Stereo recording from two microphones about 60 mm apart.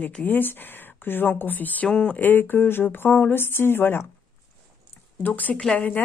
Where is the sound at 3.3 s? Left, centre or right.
Left.